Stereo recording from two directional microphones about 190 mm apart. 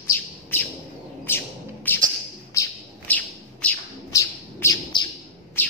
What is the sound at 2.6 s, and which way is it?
Bird, 15° left (ahead or behind).